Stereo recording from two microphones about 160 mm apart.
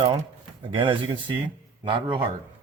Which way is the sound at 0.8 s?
30° right (ahead or behind).